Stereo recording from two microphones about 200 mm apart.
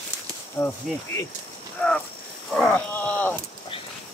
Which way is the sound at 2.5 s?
5° left (ahead or behind).